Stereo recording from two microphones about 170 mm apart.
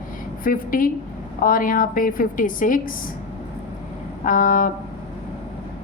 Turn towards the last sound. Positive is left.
turn(degrees=50)  # may be behind; listen again after turning